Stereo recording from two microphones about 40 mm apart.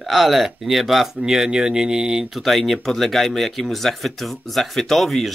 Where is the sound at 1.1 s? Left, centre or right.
Centre.